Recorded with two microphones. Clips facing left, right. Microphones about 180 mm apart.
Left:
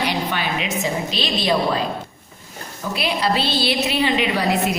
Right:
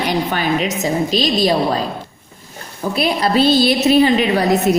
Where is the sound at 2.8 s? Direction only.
45° right (ahead or behind).